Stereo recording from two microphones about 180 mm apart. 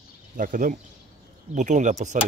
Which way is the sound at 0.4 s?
45° right (ahead or behind).